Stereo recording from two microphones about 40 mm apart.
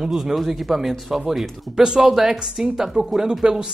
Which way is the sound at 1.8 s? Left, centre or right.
Centre.